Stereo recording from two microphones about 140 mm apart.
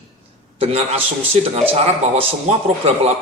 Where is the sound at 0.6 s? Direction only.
45° right (ahead or behind).